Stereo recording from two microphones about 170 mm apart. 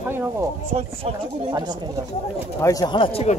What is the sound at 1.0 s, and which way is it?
Speech, 25° right (ahead or behind).